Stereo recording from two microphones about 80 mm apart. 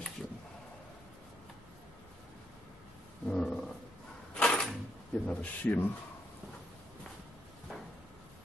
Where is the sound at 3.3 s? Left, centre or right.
Centre.